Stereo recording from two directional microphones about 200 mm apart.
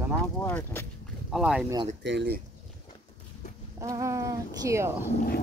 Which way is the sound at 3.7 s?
15° right (ahead or behind).